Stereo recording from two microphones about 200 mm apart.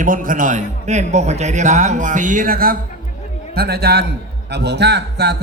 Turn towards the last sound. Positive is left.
turn(degrees=-55)  # may be behind; listen again after turning